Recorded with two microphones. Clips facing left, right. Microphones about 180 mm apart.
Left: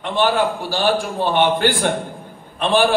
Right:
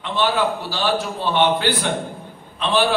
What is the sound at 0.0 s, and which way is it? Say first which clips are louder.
A man's voice: left 2 dB; 45° left (ahead or behind).